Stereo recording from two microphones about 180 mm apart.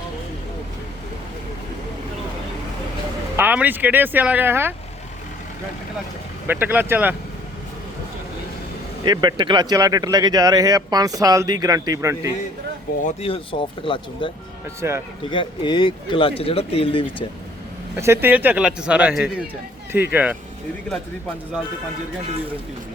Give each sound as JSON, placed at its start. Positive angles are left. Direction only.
{"t": 3.3, "sound": "speech", "side_deg": -10}
{"t": 6.5, "sound": "speech", "side_deg": -10}
{"t": 9.0, "sound": "speech", "side_deg": -25}
{"t": 13.2, "sound": "speech", "side_deg": 30}
{"t": 14.8, "sound": "speech", "side_deg": -15}
{"t": 15.3, "sound": "speech", "side_deg": 25}
{"t": 17.9, "sound": "speech", "side_deg": -15}